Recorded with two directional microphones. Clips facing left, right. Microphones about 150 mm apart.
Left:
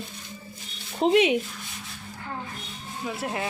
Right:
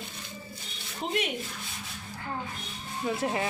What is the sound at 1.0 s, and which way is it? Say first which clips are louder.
Speech: left 11 dB; 90° left.